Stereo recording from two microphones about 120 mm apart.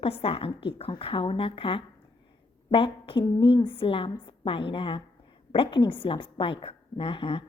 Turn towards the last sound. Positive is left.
turn(degrees=45)  # may be behind; listen again after turning